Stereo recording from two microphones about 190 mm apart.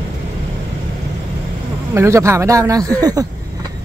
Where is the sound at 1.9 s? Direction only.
15° right (ahead or behind).